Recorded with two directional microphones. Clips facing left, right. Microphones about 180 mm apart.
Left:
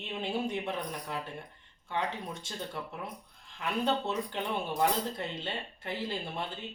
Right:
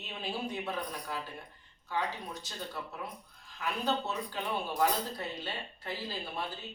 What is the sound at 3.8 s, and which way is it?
Speech, 25° left (ahead or behind).